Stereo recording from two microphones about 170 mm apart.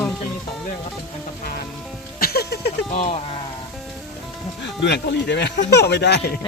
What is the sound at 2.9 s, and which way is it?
Speech, 35° left (ahead or behind).